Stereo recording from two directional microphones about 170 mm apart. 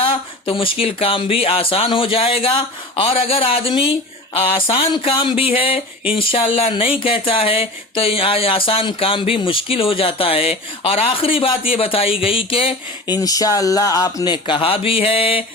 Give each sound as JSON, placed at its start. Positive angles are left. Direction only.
{"t": 0.0, "sound": "speech", "side_deg": 30}
{"t": 13.1, "sound": "speech", "side_deg": 20}